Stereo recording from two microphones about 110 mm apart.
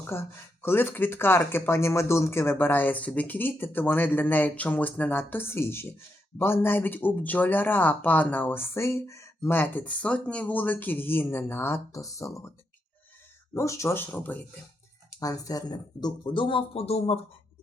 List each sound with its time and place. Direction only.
0.1 s speech: 20° left (ahead or behind)
13.5 s speech: 25° left (ahead or behind)
15.2 s speech: 35° left (ahead or behind); by 17.2 s 65° left (ahead or behind)